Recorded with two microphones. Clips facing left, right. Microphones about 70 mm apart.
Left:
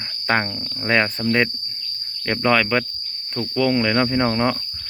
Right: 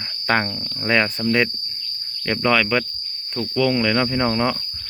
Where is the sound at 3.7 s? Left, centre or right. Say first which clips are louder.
Left 1 dB; left.